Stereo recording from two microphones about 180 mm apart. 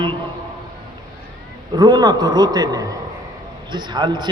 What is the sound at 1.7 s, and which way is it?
A man's voice, 25° right (ahead or behind).